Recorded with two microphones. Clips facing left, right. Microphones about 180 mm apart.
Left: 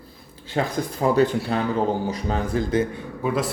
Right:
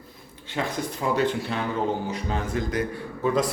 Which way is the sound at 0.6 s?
40° left (ahead or behind).